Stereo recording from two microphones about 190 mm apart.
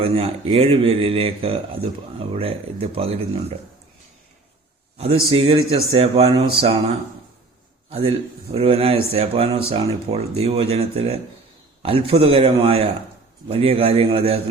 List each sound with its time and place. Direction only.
0.0 s speech: 30° right (ahead or behind)
5.3 s a man's voice: 30° right (ahead or behind)